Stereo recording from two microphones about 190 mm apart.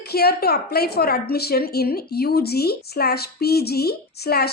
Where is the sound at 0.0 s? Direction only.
55° left (ahead or behind).